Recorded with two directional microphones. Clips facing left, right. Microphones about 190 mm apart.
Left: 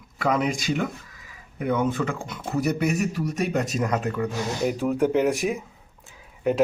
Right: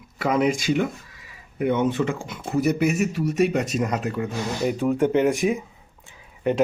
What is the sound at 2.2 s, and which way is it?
Speech, centre (ahead or behind).